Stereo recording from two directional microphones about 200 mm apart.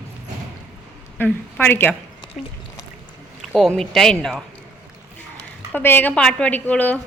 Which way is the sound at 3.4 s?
Centre (ahead or behind).